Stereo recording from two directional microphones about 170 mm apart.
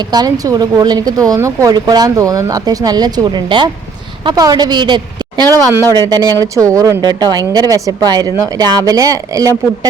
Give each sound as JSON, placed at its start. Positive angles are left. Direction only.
{"t": 0.1, "sound": "a woman's voice", "side_deg": -20}